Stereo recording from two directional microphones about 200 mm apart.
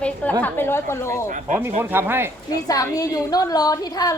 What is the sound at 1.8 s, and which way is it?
Speech, 10° right (ahead or behind).